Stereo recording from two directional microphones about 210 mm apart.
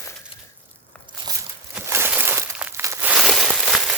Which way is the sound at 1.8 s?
10° right (ahead or behind).